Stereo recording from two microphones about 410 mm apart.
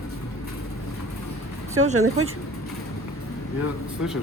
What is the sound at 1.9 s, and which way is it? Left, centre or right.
Speech, right.